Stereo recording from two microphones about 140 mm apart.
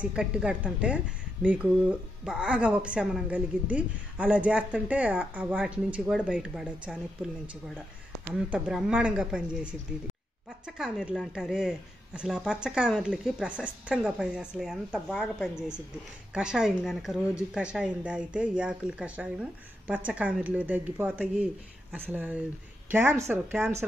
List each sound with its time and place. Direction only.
0.0 s a woman's voice: 5° right (ahead or behind)
10.8 s a woman's voice: centre (ahead or behind); by 23.7 s 15° right (ahead or behind)